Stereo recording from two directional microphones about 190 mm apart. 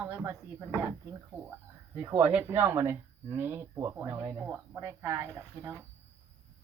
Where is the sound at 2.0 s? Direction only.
10° right (ahead or behind).